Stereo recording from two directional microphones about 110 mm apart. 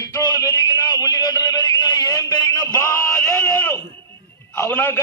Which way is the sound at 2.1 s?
30° left (ahead or behind).